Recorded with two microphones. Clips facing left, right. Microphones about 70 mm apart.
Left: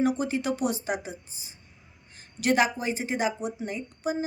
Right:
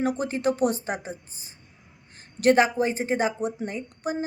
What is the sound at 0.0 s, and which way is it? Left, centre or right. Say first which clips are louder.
A woman's voice: right 1 dB; right.